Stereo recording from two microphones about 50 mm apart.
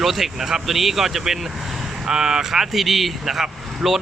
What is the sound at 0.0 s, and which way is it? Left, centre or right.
Speech, centre.